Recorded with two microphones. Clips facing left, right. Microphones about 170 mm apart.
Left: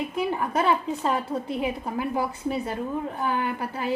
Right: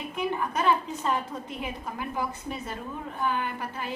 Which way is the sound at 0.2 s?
35° left (ahead or behind).